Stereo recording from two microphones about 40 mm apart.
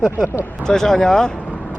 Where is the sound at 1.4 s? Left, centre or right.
Left.